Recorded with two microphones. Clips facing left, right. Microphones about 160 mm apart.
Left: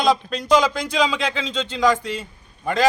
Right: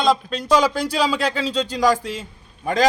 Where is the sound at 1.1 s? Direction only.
35° right (ahead or behind).